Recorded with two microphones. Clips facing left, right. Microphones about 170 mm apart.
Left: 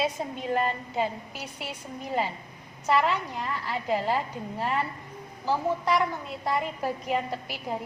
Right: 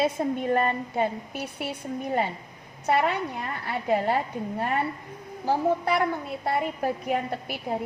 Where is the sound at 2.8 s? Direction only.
55° right (ahead or behind).